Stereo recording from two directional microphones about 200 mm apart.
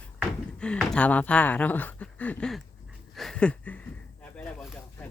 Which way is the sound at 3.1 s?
5° left (ahead or behind).